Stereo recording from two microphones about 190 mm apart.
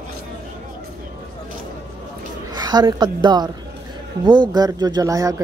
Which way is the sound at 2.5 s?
20° right (ahead or behind).